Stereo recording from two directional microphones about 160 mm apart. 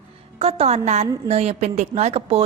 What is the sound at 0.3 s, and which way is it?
A woman's voice, 40° right (ahead or behind).